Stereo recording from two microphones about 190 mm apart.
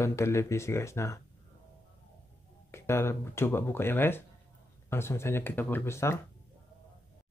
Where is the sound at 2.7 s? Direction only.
15° left (ahead or behind).